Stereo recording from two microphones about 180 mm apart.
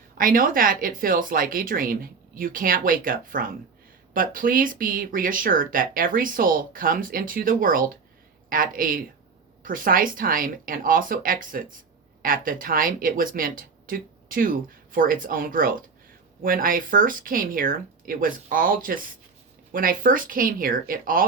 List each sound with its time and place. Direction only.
0.2 s speech: 50° right (ahead or behind)